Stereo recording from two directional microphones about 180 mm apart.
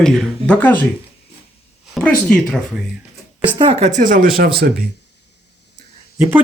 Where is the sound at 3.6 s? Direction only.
35° right (ahead or behind); by 4.7 s 55° right (ahead or behind).